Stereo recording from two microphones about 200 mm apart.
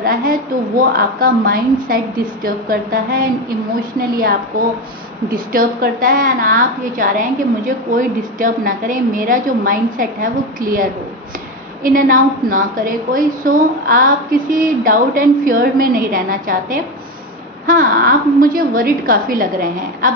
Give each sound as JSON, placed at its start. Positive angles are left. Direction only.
{"t": 0.0, "sound": "a woman's voice", "side_deg": -45}
{"t": 5.3, "sound": "a woman's voice", "side_deg": -45}